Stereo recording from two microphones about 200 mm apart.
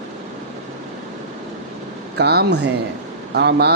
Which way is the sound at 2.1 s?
55° right (ahead or behind).